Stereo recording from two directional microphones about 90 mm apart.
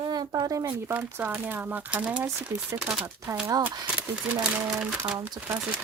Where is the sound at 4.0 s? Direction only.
15° right (ahead or behind).